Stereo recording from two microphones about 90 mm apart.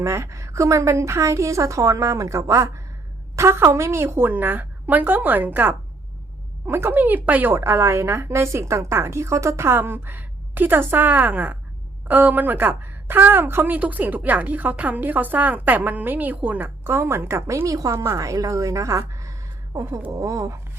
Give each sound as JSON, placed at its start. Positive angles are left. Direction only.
{"t": 0.0, "sound": "a woman's voice", "side_deg": -30}